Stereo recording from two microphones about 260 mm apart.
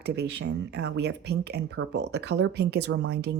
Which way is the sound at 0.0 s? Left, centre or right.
Right.